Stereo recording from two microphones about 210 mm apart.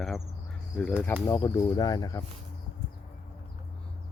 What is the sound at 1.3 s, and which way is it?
Speech, 20° left (ahead or behind).